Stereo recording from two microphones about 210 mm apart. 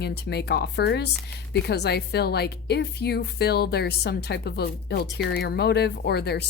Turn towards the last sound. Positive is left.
turn(degrees=50)  # may be behind; listen again after turning